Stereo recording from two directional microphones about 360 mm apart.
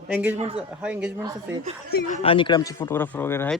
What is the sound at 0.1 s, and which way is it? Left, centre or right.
Speech, centre.